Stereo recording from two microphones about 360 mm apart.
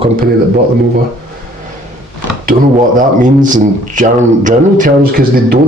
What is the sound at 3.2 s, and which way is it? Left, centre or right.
Speech, right.